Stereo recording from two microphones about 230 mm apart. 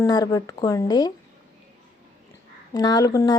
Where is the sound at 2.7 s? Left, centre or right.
Centre.